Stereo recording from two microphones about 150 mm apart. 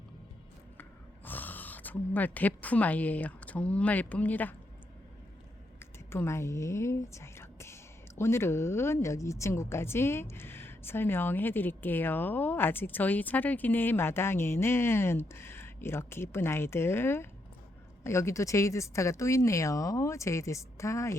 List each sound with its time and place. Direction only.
0.8 s speech: 10° left (ahead or behind)
6.1 s a woman's voice: 15° left (ahead or behind)